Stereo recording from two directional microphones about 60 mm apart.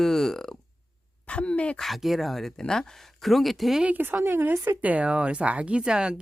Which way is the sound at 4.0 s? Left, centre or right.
Right.